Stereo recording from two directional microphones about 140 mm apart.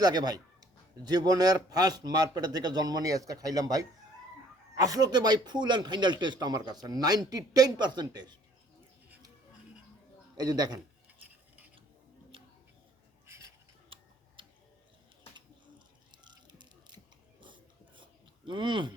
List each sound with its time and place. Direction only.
0.0 s a man's voice: 30° right (ahead or behind)
4.8 s a man's voice: 25° right (ahead or behind)
10.3 s a man's voice: 30° right (ahead or behind)
14.4 s tick-tock: 35° right (ahead or behind)
16.1 s a sound: 30° right (ahead or behind)
17.4 s filing: 35° right (ahead or behind)